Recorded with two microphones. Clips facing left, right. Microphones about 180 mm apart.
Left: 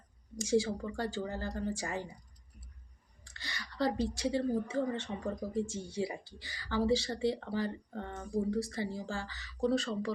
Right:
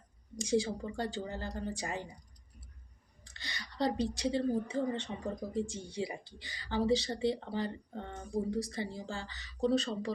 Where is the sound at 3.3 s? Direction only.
20° right (ahead or behind).